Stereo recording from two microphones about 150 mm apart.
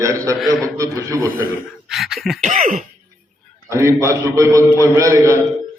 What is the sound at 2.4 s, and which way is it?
Speech, 60° right (ahead or behind).